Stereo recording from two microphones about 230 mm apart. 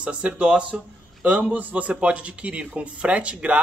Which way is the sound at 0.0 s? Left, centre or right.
Centre.